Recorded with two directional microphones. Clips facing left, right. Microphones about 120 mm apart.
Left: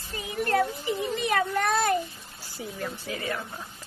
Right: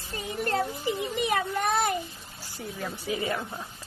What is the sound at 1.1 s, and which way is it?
Speech, 15° right (ahead or behind).